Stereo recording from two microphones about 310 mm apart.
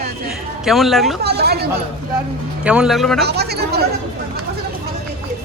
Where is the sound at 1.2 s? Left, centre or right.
Right.